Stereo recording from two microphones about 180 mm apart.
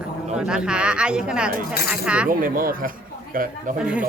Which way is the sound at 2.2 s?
50° right (ahead or behind).